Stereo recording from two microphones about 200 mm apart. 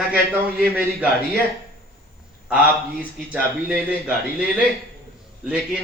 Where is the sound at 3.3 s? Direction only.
5° right (ahead or behind).